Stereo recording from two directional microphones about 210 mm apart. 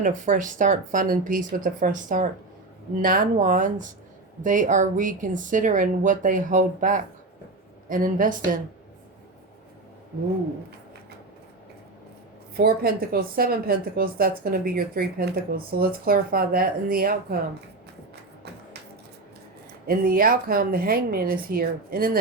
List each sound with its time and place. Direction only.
0.0 s speech: 35° right (ahead or behind)
12.5 s a woman's voice: 45° right (ahead or behind)
19.9 s a woman's voice: 45° right (ahead or behind)